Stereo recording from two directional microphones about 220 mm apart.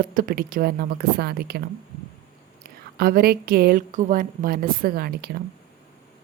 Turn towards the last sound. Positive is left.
turn(degrees=-45)  # may be behind; listen again after turning